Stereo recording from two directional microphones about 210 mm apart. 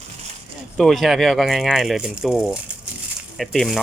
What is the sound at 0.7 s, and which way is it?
Speech, centre (ahead or behind).